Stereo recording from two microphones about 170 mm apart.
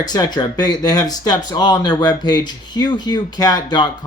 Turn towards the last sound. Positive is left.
turn(degrees=25)  # may be behind; listen again after turning